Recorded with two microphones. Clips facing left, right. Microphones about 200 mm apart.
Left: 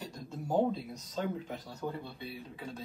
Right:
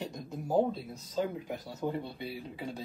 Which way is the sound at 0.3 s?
5° right (ahead or behind).